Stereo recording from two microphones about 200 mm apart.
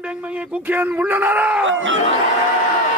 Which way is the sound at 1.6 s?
70° right (ahead or behind).